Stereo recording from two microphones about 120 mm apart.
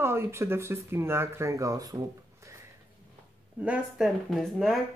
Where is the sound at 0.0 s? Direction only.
20° right (ahead or behind).